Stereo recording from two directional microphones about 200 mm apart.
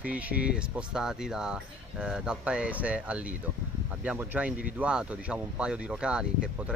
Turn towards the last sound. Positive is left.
turn(degrees=-5)  # may be behind; listen again after turning